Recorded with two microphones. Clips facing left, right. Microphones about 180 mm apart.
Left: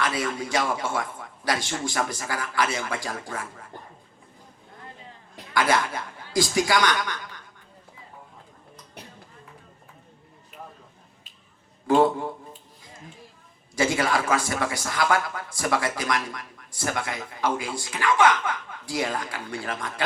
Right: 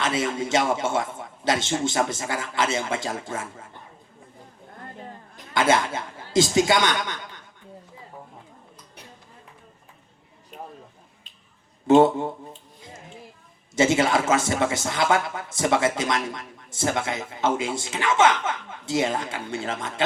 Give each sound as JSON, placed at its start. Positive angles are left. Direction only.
{"t": 0.0, "sound": "a man's voice", "side_deg": -25}
{"t": 5.5, "sound": "speech", "side_deg": -25}
{"t": 11.9, "sound": "a man's voice", "side_deg": -25}
{"t": 13.7, "sound": "a man's voice", "side_deg": -25}